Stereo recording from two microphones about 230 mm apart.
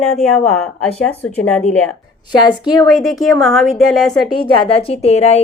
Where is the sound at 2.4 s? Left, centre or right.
Centre.